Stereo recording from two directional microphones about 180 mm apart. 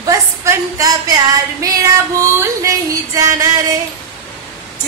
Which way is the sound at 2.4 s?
15° right (ahead or behind).